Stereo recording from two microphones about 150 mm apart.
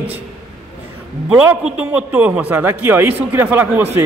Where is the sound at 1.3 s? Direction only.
10° right (ahead or behind).